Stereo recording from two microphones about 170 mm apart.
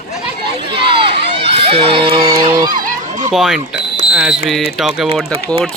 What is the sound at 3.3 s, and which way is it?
Speech, centre (ahead or behind).